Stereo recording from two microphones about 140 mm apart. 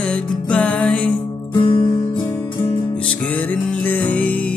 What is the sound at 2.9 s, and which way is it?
Music, 10° left (ahead or behind).